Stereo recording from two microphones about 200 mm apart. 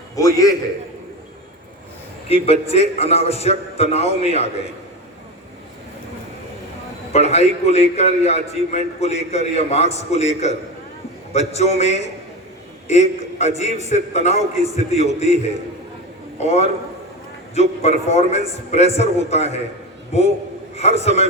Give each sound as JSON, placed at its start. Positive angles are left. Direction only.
{"t": 0.2, "sound": "a man's voice", "side_deg": 15}
{"t": 2.2, "sound": "a man's voice", "side_deg": 30}
{"t": 7.1, "sound": "a man's voice", "side_deg": 35}
{"t": 16.4, "sound": "a man's voice", "side_deg": 35}